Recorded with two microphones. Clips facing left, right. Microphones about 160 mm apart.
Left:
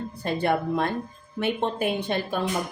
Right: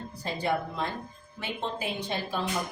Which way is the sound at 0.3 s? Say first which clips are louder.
Left 6 dB; 60° left (ahead or behind).